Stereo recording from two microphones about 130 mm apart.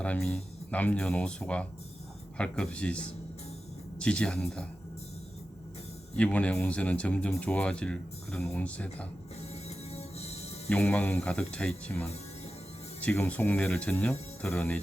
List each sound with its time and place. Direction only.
0.0 s speech: 10° left (ahead or behind)
6.1 s speech: 10° left (ahead or behind)
9.6 s music: 55° left (ahead or behind)
10.7 s speech: 10° left (ahead or behind)